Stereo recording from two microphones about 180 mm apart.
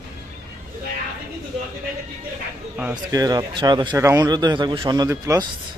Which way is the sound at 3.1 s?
20° right (ahead or behind).